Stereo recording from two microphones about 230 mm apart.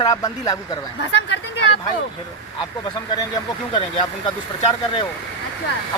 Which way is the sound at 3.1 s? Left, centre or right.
Centre.